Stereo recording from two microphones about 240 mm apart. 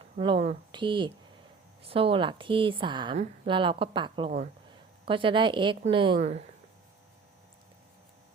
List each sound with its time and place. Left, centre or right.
0.0 s a woman's voice: right